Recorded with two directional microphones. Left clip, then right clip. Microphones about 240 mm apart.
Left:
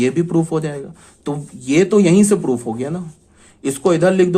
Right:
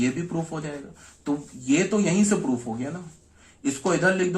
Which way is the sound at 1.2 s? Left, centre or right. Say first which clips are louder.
Left 4 dB; left.